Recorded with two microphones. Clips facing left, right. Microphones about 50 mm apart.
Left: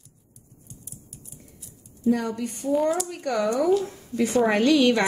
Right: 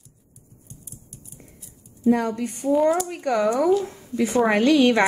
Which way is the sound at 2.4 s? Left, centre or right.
Centre.